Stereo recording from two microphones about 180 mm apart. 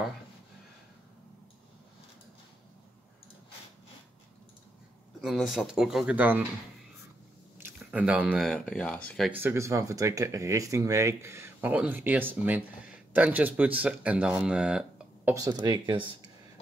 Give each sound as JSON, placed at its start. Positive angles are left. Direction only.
{"t": 5.2, "sound": "speech", "side_deg": 0}
{"t": 7.5, "sound": "speech", "side_deg": -10}
{"t": 9.3, "sound": "speech", "side_deg": -10}
{"t": 15.3, "sound": "speech", "side_deg": -20}